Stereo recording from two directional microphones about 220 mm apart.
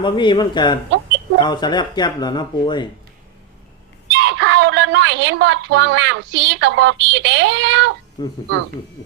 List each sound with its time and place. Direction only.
0.0 s speech: 20° left (ahead or behind)
4.1 s a woman's voice: 55° right (ahead or behind)
8.2 s speech: 20° left (ahead or behind)